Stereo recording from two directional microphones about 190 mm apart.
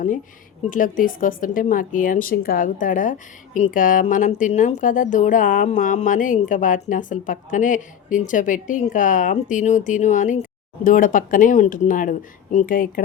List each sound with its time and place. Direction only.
0.7 s speech: 45° left (ahead or behind)